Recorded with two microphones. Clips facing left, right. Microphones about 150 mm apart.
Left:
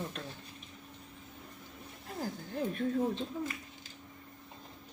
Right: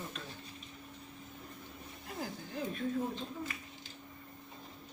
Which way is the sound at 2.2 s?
50° left (ahead or behind).